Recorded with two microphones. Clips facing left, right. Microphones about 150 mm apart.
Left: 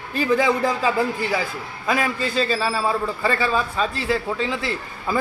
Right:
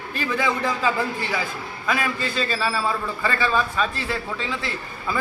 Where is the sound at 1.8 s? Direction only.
35° left (ahead or behind).